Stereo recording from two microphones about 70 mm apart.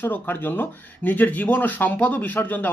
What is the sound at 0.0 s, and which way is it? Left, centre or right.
Speech, left.